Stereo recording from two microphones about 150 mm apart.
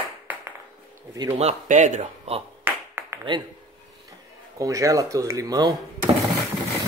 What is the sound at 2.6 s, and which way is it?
Clapping, 10° right (ahead or behind).